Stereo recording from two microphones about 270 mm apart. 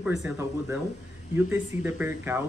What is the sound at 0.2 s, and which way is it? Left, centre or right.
Speech, centre.